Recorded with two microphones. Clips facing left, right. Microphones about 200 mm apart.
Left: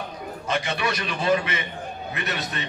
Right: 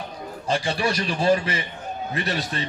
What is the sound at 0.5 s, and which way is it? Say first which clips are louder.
A man's voice: right 3 dB; 30° right (ahead or behind).